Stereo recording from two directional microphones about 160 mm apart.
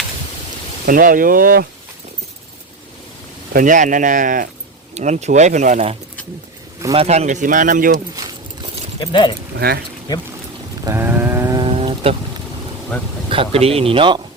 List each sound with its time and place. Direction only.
0.9 s speech: 60° right (ahead or behind)
3.5 s speech: 55° right (ahead or behind)
4.9 s speech: 45° right (ahead or behind)
8.1 s keys jangling: 25° right (ahead or behind)
9.0 s speech: 30° left (ahead or behind)
9.6 s speech: 80° right
10.8 s a sound: 15° right (ahead or behind)
11.6 s vehicle: 35° right (ahead or behind)
13.3 s speech: 35° right (ahead or behind)